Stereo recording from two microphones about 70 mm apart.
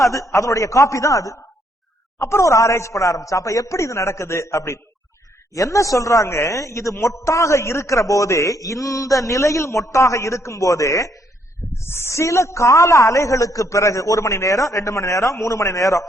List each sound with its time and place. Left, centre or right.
0.0 s a man's voice: left
11.8 s a man's voice: left